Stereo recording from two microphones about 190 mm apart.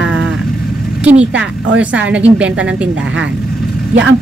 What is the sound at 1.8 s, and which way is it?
Speech, 5° right (ahead or behind).